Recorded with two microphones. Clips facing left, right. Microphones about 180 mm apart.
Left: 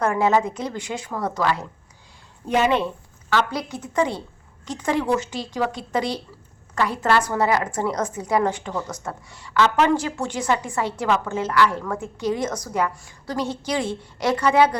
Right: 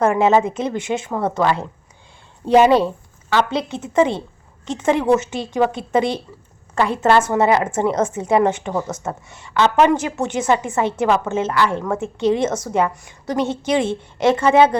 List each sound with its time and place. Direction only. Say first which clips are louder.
0.0 s a woman's voice: right 5 dB; 25° right (ahead or behind)
3.2 s a woman's voice: right 4 dB; 25° right (ahead or behind)